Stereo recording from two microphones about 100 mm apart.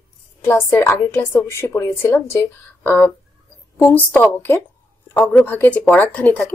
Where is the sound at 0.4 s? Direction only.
30° left (ahead or behind).